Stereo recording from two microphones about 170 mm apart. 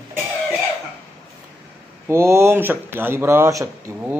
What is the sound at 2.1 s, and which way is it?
Speech, 15° right (ahead or behind).